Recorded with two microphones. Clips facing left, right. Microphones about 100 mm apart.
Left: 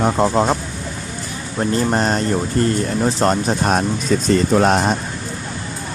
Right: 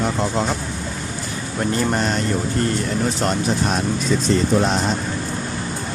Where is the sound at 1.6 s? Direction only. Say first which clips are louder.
Left 3 dB; 35° left (ahead or behind).